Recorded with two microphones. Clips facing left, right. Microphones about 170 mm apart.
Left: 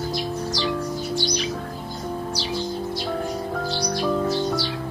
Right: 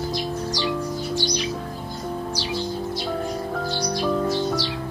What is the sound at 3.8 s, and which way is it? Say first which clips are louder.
Music: even; 5° right (ahead or behind).